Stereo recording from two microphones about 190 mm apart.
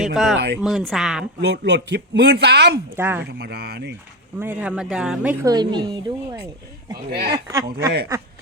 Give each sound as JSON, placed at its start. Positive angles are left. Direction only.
{"t": 0.0, "sound": "speech", "side_deg": 0}
{"t": 0.3, "sound": "a man's voice", "side_deg": -60}
{"t": 0.6, "sound": "speech", "side_deg": 0}
{"t": 1.4, "sound": "a man's voice", "side_deg": -65}
{"t": 2.9, "sound": "speech", "side_deg": -10}
{"t": 3.2, "sound": "a man's voice", "side_deg": -60}
{"t": 4.4, "sound": "speech", "side_deg": -10}
{"t": 6.9, "sound": "a man's voice", "side_deg": -55}
{"t": 7.5, "sound": "speech", "side_deg": -15}